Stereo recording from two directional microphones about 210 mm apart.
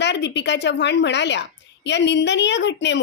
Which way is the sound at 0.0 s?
55° left (ahead or behind).